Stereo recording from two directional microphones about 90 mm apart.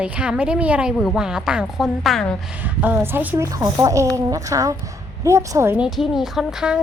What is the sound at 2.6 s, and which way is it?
Speech, 20° right (ahead or behind).